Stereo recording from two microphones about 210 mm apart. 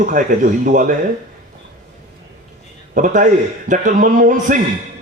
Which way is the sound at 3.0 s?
40° right (ahead or behind).